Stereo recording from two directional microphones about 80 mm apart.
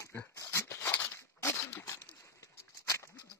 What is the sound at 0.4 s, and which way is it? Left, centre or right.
Dog, left.